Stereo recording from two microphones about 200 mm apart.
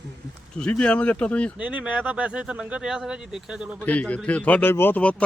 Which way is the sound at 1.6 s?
5° right (ahead or behind).